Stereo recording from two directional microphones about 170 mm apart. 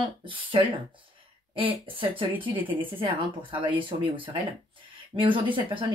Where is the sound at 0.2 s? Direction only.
30° right (ahead or behind).